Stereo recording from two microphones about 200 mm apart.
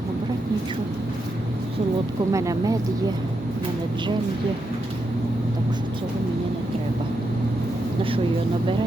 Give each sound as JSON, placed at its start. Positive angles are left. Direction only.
{"t": 2.3, "sound": "speech", "side_deg": -15}